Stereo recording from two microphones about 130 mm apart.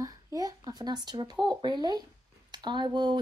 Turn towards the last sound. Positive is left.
turn(degrees=-35)  # may be behind; listen again after turning